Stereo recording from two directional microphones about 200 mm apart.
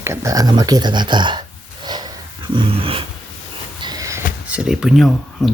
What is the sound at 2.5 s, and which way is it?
Dog, 25° right (ahead or behind).